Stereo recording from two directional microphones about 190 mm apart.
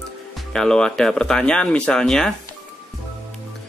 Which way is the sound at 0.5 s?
5° left (ahead or behind).